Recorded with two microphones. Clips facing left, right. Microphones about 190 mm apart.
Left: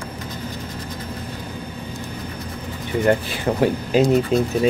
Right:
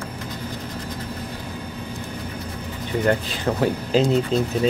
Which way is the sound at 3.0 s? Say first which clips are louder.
Left 3 dB; 15° left (ahead or behind).